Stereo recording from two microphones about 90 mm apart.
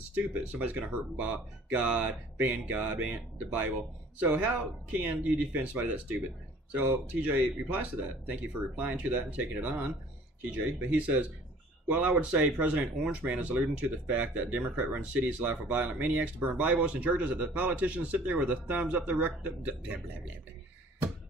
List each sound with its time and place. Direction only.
0.1 s speech: 15° right (ahead or behind)
4.2 s speech: 15° right (ahead or behind)